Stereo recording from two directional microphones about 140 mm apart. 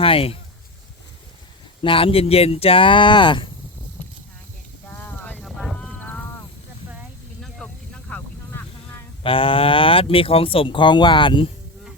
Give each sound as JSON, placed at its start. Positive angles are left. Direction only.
{"t": 0.0, "sound": "speech", "side_deg": 40}
{"t": 1.8, "sound": "speech", "side_deg": 40}
{"t": 4.9, "sound": "a sound", "side_deg": 10}
{"t": 5.4, "sound": "a sound", "side_deg": 0}
{"t": 8.1, "sound": "vehicle", "side_deg": 15}
{"t": 9.2, "sound": "speech", "side_deg": 40}